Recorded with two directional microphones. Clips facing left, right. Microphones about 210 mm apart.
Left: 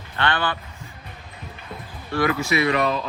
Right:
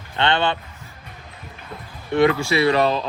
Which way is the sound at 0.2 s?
25° right (ahead or behind).